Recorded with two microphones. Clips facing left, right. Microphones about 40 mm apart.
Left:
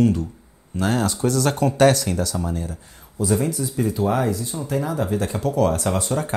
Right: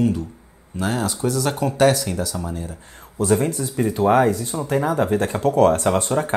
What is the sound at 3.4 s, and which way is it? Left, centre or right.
Speech, right.